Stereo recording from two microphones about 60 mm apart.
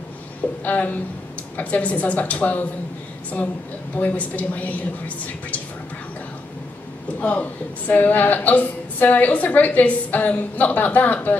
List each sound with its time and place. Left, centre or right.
0.7 s a woman's voice: left
3.9 s a woman's voice: left
7.2 s a woman's voice: left